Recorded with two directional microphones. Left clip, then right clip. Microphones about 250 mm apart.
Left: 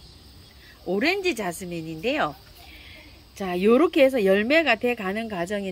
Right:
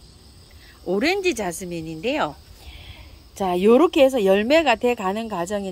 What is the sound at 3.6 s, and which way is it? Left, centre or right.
Speech, centre.